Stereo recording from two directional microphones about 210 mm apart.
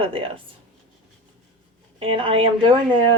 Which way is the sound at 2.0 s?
25° right (ahead or behind).